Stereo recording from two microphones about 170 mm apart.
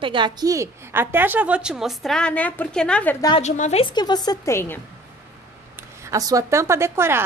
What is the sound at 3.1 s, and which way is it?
Speech, 25° left (ahead or behind).